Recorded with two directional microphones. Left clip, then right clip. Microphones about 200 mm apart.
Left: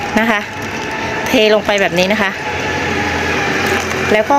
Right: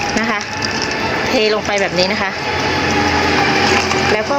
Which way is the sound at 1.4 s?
50° left (ahead or behind).